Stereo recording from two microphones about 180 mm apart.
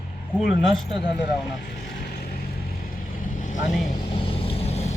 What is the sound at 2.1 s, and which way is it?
Vehicle, 60° left (ahead or behind).